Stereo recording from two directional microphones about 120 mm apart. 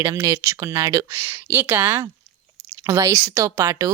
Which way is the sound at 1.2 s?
15° right (ahead or behind).